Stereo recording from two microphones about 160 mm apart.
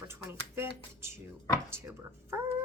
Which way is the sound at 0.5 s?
15° right (ahead or behind).